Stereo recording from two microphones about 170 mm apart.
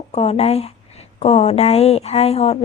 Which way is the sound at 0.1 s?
40° left (ahead or behind).